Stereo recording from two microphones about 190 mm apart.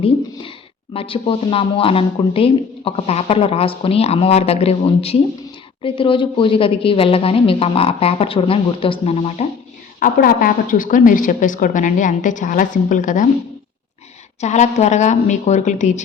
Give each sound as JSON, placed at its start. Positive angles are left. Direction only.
{"t": 0.9, "sound": "a woman's voice", "side_deg": 30}
{"t": 10.0, "sound": "a woman's voice", "side_deg": 45}
{"t": 14.4, "sound": "speech", "side_deg": 35}